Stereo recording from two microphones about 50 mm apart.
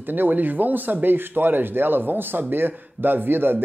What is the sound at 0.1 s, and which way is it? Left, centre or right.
Speech, right.